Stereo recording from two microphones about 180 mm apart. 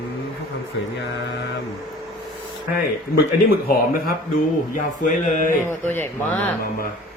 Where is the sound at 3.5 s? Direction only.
55° left (ahead or behind).